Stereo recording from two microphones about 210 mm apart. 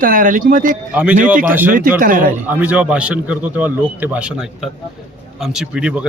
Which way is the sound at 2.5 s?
5° right (ahead or behind).